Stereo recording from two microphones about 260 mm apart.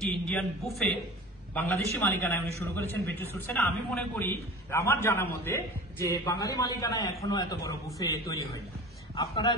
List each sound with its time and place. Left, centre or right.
0.0 s a man's voice: centre